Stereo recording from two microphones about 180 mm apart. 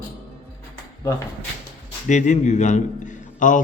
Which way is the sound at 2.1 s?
40° left (ahead or behind).